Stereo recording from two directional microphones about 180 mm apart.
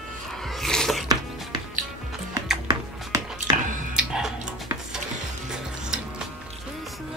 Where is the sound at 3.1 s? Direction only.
20° right (ahead or behind).